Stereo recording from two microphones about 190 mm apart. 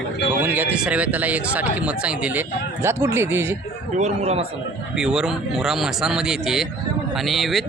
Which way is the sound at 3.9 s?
35° right (ahead or behind).